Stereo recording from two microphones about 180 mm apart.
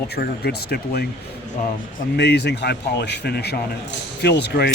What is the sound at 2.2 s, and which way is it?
Speech, 70° left (ahead or behind).